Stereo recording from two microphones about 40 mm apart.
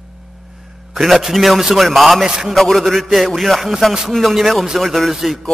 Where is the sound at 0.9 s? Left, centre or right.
Centre.